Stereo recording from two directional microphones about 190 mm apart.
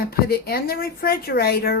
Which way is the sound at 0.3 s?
55° left (ahead or behind).